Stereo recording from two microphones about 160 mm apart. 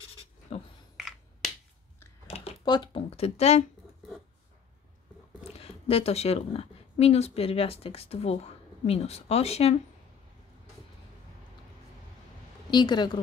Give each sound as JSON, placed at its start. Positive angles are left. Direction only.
{"t": 0.9, "sound": "finger snapping", "side_deg": 0}
{"t": 2.2, "sound": "a sound", "side_deg": 40}
{"t": 2.6, "sound": "speech", "side_deg": 30}
{"t": 5.6, "sound": "speech", "side_deg": 35}
{"t": 12.7, "sound": "a woman's voice", "side_deg": 30}